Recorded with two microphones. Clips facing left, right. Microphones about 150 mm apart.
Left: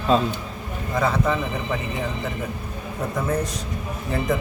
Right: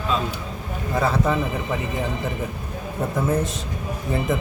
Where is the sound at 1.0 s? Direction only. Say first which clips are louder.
Even; 5° right (ahead or behind).